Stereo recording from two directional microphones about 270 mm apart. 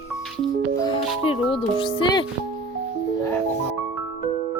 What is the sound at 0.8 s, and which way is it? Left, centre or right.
Speech, centre.